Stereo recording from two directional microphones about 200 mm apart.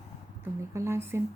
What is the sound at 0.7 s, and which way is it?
Speech, 15° right (ahead or behind).